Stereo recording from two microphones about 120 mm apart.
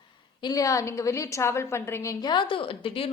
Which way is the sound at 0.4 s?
30° left (ahead or behind).